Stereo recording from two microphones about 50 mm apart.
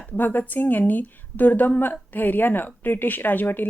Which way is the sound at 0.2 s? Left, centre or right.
Left.